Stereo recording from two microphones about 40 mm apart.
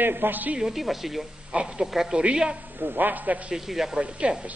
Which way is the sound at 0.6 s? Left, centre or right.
Centre.